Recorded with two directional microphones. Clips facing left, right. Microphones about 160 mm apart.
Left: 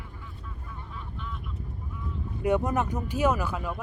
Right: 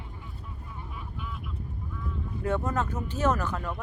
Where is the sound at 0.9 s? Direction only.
10° right (ahead or behind).